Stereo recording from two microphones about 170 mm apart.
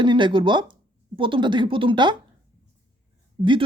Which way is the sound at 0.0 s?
25° right (ahead or behind).